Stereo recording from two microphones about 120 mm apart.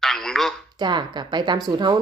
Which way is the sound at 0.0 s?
Centre (ahead or behind).